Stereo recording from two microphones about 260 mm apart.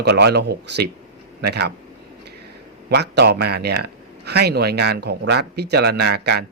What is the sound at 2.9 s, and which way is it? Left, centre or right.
Speech, right.